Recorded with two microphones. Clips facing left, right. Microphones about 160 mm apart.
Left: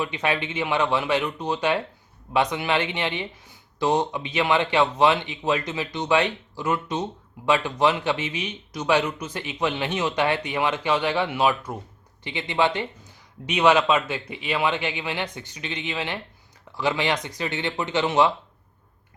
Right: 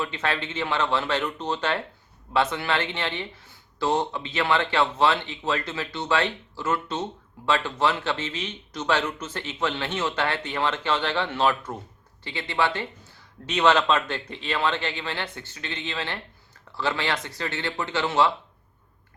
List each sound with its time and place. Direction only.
0.0 s speech: 15° left (ahead or behind)